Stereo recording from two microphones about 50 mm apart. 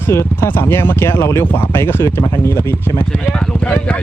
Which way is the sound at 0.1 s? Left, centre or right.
Left.